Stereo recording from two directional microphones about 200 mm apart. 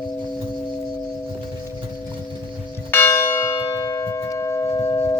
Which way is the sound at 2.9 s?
10° left (ahead or behind).